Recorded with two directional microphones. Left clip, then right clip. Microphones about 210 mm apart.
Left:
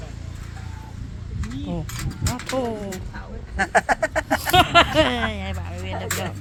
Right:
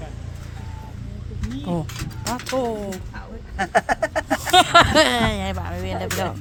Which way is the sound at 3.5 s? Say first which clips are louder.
Left 1 dB; 15° right (ahead or behind).